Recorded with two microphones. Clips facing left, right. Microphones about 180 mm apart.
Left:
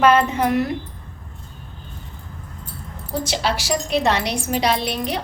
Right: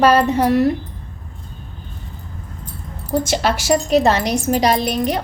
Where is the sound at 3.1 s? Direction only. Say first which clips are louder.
Right 5 dB; 50° right (ahead or behind).